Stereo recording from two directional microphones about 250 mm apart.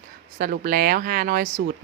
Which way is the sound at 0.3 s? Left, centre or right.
Right.